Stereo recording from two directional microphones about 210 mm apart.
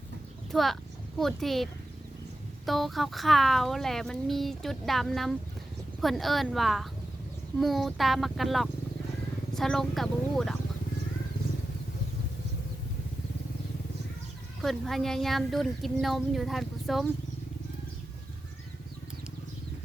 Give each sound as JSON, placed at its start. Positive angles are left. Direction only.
{"t": 0.5, "sound": "speech", "side_deg": 0}
{"t": 14.6, "sound": "speech", "side_deg": 0}